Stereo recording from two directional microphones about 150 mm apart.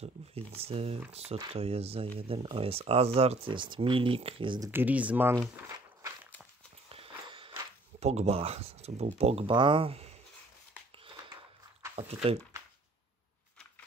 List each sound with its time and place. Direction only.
0.0 s speech: 40° right (ahead or behind)
4.6 s speech: 10° right (ahead or behind)
6.9 s a sound: 40° right (ahead or behind)
8.0 s speech: 45° right (ahead or behind)
9.5 s speech: 30° right (ahead or behind)
11.9 s speech: 45° right (ahead or behind)